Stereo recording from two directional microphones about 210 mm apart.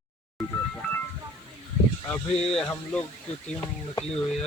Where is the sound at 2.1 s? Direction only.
5° left (ahead or behind).